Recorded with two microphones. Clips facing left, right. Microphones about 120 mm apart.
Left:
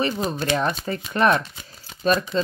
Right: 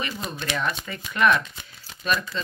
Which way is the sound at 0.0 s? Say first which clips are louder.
Left 8 dB; 40° left (ahead or behind).